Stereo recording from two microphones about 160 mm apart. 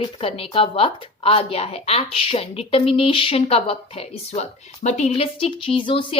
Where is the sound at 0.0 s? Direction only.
35° left (ahead or behind).